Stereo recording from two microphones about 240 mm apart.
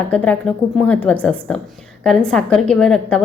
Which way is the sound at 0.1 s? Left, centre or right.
Centre.